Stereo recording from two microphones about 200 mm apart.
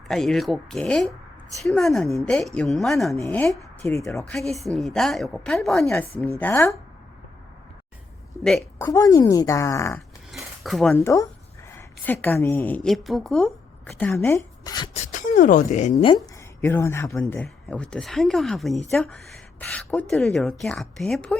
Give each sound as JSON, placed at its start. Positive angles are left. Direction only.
{"t": 0.1, "sound": "a woman's voice", "side_deg": 0}
{"t": 5.8, "sound": "a woman's voice", "side_deg": 15}
{"t": 8.8, "sound": "a woman's voice", "side_deg": 15}
{"t": 10.3, "sound": "a woman's voice", "side_deg": 0}
{"t": 14.9, "sound": "speech", "side_deg": 35}
{"t": 16.2, "sound": "a woman's voice", "side_deg": 10}